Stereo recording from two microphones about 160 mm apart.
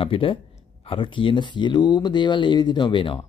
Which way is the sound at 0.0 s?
35° left (ahead or behind).